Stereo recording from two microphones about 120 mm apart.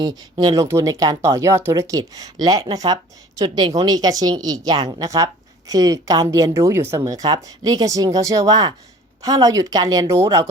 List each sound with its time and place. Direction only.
0.0 s speech: 35° right (ahead or behind)